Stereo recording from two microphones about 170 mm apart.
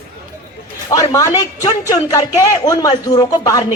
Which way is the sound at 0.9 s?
20° left (ahead or behind).